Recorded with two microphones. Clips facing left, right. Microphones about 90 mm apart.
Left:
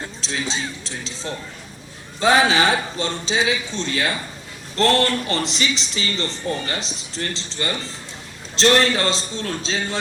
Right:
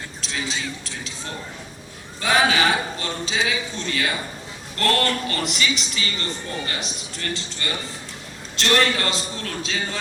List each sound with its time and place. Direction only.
0.2 s a man's voice: 25° left (ahead or behind)
2.2 s a man's voice: 30° left (ahead or behind)